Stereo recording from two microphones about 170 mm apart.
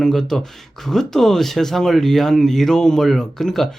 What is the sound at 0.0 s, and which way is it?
Speech, centre (ahead or behind).